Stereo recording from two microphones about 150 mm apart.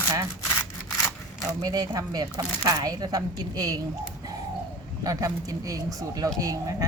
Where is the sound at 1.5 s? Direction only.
25° right (ahead or behind).